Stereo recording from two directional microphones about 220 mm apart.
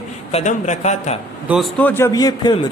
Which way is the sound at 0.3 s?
30° left (ahead or behind).